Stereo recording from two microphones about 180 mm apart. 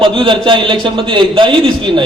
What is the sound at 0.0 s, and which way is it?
A man's voice, 30° right (ahead or behind).